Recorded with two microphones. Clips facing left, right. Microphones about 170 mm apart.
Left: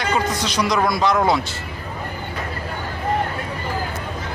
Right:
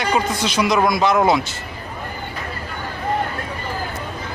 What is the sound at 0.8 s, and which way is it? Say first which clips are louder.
Speech: right 2 dB; 20° right (ahead or behind).